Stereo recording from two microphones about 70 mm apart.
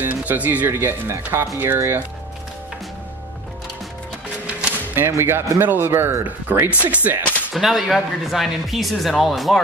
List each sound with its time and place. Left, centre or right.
0.0 s speech: right
4.9 s speech: right
6.8 s speech: right
7.5 s speech: centre